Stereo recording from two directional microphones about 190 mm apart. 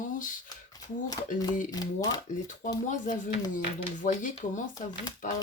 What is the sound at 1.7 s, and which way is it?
Speech, 20° left (ahead or behind).